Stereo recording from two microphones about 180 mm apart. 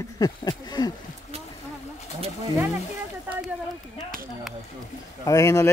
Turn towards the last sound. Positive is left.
turn(degrees=15)  # may be behind; listen again after turning